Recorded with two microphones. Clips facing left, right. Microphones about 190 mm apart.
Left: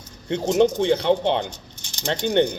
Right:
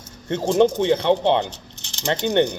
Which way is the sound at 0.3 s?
15° left (ahead or behind).